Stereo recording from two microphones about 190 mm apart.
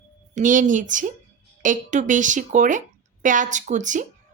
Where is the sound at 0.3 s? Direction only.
40° right (ahead or behind).